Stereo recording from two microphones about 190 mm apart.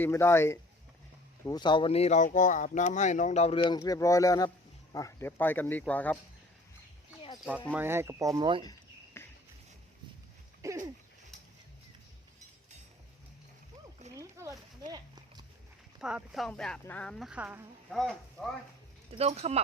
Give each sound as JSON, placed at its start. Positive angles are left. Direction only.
{"t": 0.0, "sound": "speech", "side_deg": 15}
{"t": 7.7, "sound": "speech", "side_deg": -10}
{"t": 9.2, "sound": "a sound", "side_deg": 15}
{"t": 10.6, "sound": "speech", "side_deg": -15}
{"t": 14.1, "sound": "a sound", "side_deg": -15}
{"t": 16.0, "sound": "speech", "side_deg": -5}
{"t": 17.9, "sound": "speech", "side_deg": 0}
{"t": 19.1, "sound": "speech", "side_deg": -35}